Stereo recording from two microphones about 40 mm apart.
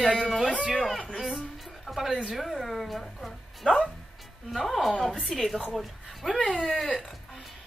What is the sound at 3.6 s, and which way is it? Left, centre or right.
Speech, centre.